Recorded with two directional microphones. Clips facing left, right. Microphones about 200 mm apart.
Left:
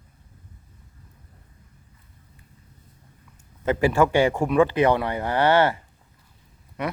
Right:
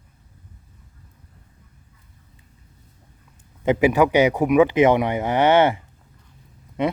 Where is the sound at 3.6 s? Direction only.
15° right (ahead or behind).